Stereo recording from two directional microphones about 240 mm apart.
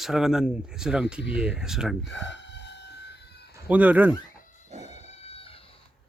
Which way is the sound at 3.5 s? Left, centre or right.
Centre.